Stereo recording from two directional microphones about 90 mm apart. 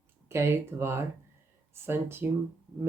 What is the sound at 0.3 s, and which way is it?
Speech, 30° right (ahead or behind).